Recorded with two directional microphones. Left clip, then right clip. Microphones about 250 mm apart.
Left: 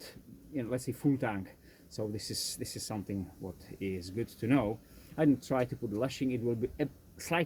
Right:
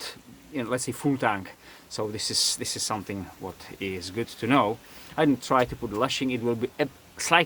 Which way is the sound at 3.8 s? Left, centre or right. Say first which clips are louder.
Right 6 dB; centre.